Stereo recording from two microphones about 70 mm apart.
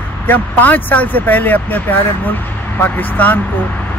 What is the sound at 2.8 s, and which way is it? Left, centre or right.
Speech, left.